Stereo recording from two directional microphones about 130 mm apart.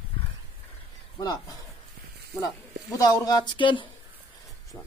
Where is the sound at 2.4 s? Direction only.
25° left (ahead or behind).